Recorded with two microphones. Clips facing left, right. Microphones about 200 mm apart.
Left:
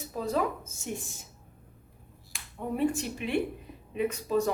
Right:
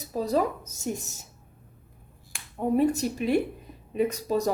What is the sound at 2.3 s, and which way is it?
Speech, 40° right (ahead or behind).